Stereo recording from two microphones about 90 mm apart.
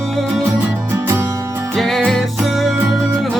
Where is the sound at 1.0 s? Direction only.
30° right (ahead or behind).